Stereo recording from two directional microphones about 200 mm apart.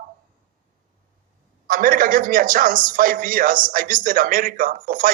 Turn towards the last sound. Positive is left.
turn(degrees=-40)  # may be behind; listen again after turning